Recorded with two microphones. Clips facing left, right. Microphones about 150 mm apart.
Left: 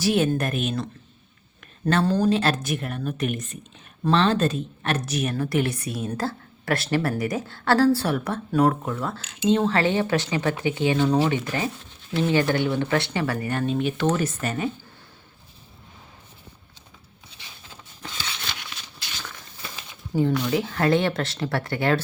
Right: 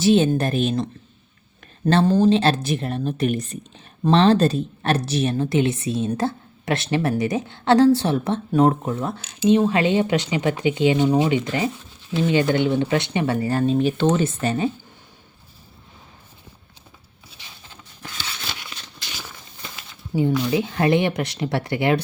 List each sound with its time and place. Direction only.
0.0 s a woman's voice: 25° right (ahead or behind)
1.9 s a woman's voice: 25° right (ahead or behind)
20.3 s speech: 5° right (ahead or behind)
20.6 s a woman's voice: 20° right (ahead or behind)